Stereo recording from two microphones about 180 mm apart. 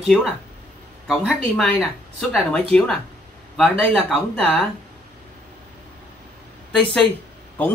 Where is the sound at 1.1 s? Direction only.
5° right (ahead or behind).